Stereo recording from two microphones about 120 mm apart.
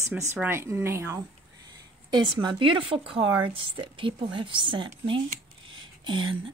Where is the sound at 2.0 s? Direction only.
40° right (ahead or behind).